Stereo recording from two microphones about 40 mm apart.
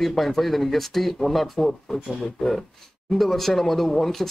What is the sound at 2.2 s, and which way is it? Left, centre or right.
Speech, centre.